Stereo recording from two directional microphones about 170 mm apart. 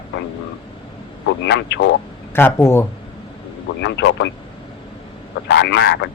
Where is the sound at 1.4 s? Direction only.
90° left.